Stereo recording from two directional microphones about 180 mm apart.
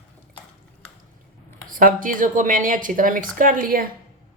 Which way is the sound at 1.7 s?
50° right (ahead or behind).